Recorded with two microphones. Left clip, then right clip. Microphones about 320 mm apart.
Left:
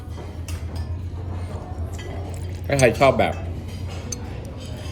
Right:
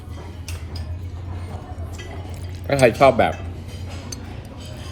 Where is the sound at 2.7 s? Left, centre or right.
Centre.